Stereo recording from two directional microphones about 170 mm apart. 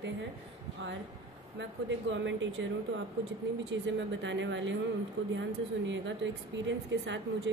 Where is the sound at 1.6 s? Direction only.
90° right.